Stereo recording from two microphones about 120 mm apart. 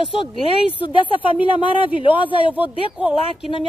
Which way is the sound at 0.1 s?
50° left (ahead or behind).